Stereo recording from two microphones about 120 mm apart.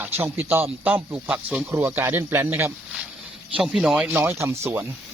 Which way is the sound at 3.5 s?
10° right (ahead or behind).